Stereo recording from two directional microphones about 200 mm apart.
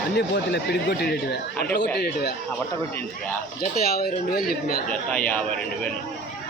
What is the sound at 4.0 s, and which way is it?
Speech, 50° left (ahead or behind).